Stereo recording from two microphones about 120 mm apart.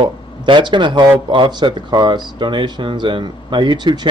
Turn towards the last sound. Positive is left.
turn(degrees=-40)  # may be behind; listen again after turning